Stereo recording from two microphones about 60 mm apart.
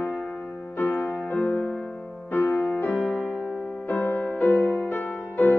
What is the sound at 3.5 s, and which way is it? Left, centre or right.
Music, centre.